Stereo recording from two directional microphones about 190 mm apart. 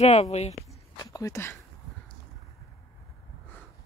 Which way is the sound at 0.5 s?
15° left (ahead or behind).